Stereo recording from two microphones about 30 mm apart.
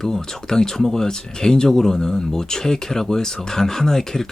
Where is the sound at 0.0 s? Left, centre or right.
Centre.